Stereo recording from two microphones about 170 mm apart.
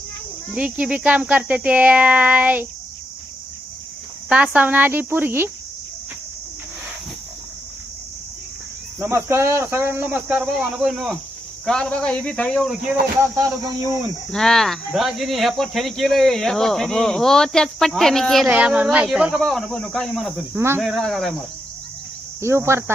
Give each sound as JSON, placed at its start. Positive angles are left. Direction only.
{"t": 0.5, "sound": "speech", "side_deg": -5}
{"t": 4.5, "sound": "speech", "side_deg": -10}
{"t": 9.0, "sound": "speech", "side_deg": -15}
{"t": 13.3, "sound": "speech", "side_deg": -20}
{"t": 14.3, "sound": "speech", "side_deg": 5}
{"t": 20.5, "sound": "speech", "side_deg": -15}
{"t": 20.8, "sound": "speech", "side_deg": 0}
{"t": 22.4, "sound": "speech", "side_deg": -15}